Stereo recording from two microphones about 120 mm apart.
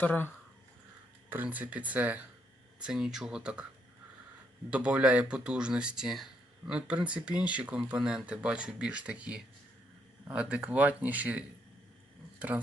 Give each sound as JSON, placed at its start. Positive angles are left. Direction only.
{"t": 0.0, "sound": "speech", "side_deg": 15}
{"t": 1.3, "sound": "speech", "side_deg": -15}
{"t": 4.7, "sound": "speech", "side_deg": -10}